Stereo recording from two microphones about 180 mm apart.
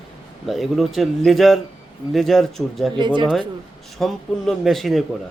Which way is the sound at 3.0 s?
25° right (ahead or behind).